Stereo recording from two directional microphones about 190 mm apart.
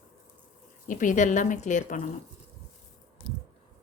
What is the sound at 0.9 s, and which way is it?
A woman's voice, 40° left (ahead or behind).